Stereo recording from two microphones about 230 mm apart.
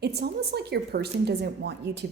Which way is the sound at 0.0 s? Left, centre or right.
Right.